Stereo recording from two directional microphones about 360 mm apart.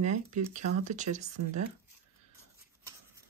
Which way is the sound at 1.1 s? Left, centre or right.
Right.